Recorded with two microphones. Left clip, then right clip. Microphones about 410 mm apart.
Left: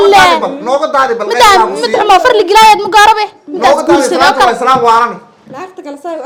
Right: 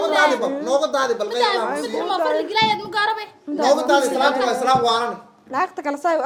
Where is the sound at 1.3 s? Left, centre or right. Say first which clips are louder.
Left 14 dB; left.